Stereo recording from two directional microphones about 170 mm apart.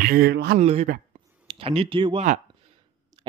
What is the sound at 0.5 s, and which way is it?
Speech, 40° right (ahead or behind).